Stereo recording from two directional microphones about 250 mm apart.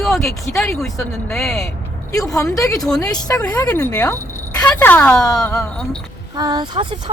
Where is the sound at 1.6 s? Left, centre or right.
Centre.